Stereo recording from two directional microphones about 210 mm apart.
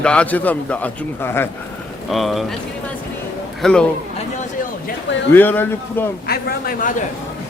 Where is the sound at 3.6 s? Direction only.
5° left (ahead or behind).